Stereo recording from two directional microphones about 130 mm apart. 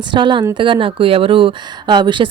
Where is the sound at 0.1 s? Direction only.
35° right (ahead or behind).